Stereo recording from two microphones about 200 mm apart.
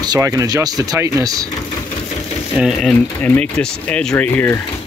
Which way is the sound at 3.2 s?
10° left (ahead or behind).